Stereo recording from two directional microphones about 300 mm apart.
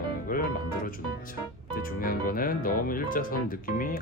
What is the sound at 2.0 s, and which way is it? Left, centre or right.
Speech, left.